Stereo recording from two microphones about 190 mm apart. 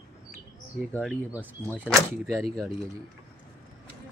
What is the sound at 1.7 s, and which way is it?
Speech, 10° right (ahead or behind).